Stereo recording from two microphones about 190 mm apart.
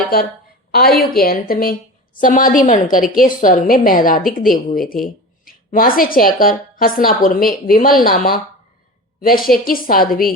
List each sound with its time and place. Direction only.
0.7 s a woman's voice: 55° left (ahead or behind)
9.5 s a woman's voice: 50° left (ahead or behind)